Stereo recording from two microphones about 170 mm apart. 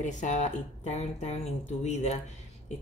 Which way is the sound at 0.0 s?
45° left (ahead or behind).